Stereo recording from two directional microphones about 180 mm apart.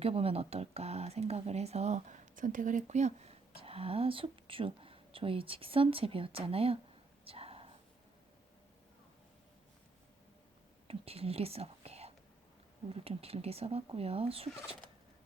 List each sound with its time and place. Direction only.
0.0 s speech: 35° right (ahead or behind)
7.3 s whispering: 30° right (ahead or behind)
10.8 s speech: 35° right (ahead or behind)